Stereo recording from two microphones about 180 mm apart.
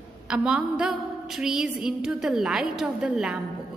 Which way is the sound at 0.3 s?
5° right (ahead or behind).